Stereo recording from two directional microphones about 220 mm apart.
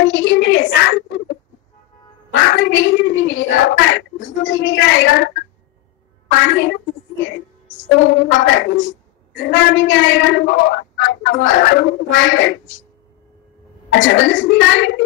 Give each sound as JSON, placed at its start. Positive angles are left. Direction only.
{"t": 0.0, "sound": "a sound", "side_deg": 60}
{"t": 2.3, "sound": "speech", "side_deg": 55}
{"t": 6.3, "sound": "speech", "side_deg": 55}
{"t": 13.9, "sound": "speech", "side_deg": 60}